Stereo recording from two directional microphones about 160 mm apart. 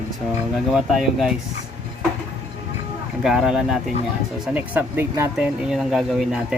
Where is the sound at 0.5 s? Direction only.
Centre (ahead or behind).